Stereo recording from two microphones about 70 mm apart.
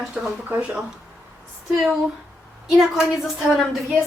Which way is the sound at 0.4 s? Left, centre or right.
Centre.